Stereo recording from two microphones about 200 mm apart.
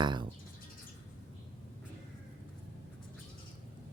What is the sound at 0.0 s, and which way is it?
Bird, 25° right (ahead or behind).